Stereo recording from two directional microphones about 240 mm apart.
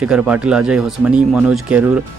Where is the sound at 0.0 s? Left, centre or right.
Centre.